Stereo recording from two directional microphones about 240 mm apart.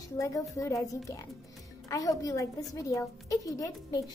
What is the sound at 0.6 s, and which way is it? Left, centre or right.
A woman's voice, centre.